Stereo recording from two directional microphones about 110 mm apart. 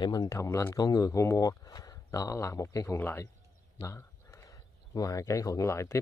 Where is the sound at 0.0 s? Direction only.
35° left (ahead or behind).